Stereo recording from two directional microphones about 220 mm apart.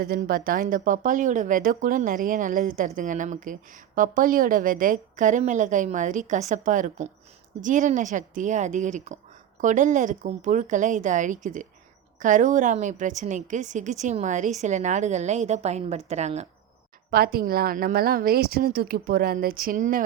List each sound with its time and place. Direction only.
0.2 s speech: 40° right (ahead or behind)
17.1 s a woman's voice: 45° right (ahead or behind)